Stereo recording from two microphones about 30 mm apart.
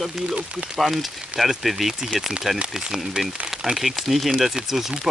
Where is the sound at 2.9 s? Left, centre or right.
Centre.